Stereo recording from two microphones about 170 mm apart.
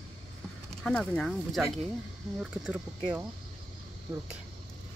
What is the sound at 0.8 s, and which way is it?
Speech, 5° left (ahead or behind).